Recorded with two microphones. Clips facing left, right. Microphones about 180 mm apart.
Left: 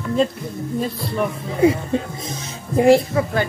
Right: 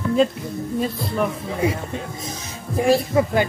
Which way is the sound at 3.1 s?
15° right (ahead or behind).